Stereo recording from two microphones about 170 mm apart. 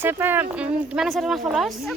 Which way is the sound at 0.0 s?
15° right (ahead or behind).